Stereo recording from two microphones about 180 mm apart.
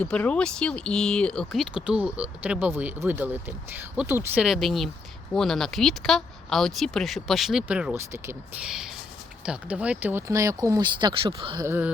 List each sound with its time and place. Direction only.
0.0 s speech: 5° left (ahead or behind); by 11.6 s 30° right (ahead or behind)
11.6 s speech: 10° right (ahead or behind)